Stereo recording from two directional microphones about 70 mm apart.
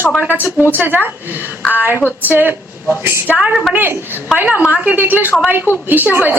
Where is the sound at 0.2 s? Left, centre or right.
Right.